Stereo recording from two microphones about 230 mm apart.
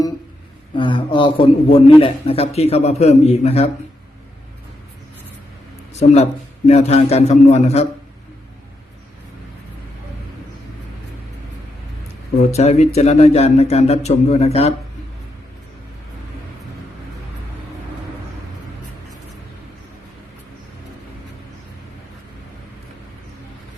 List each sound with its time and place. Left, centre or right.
0.8 s speech: left
5.9 s speech: left
12.4 s speech: left